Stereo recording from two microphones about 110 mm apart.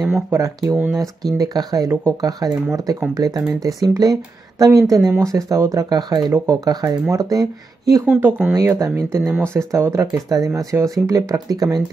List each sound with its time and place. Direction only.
0.3 s speech: 30° right (ahead or behind)
8.2 s speech: 20° right (ahead or behind)
8.5 s speech: 30° right (ahead or behind)